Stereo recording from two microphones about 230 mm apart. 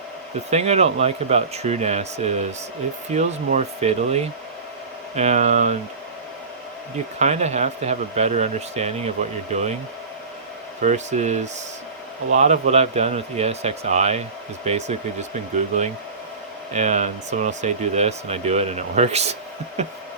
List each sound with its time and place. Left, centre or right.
0.5 s speech: right
7.2 s speech: right
10.8 s speech: right
16.7 s speech: right